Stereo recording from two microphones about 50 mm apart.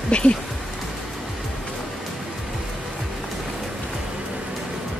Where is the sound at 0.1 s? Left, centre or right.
Left.